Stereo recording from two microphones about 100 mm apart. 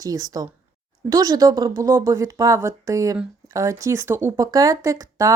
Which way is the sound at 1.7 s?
30° right (ahead or behind).